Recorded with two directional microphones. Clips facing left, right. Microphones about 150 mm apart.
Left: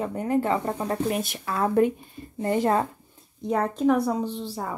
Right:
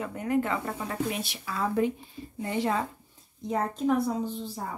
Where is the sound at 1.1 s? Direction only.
50° left (ahead or behind).